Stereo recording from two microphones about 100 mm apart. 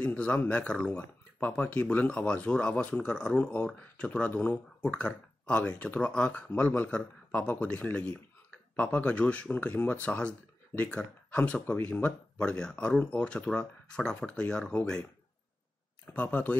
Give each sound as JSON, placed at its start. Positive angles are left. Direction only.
{"t": 0.0, "sound": "speech", "side_deg": 15}
{"t": 16.1, "sound": "speech", "side_deg": 15}